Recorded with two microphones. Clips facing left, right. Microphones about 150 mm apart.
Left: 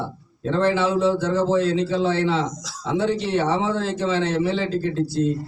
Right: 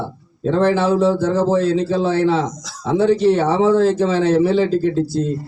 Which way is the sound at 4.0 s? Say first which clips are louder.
Right 7 dB; 5° right (ahead or behind).